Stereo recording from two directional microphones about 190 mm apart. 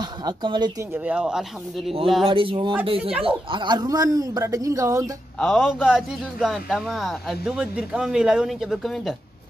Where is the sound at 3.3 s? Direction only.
25° right (ahead or behind).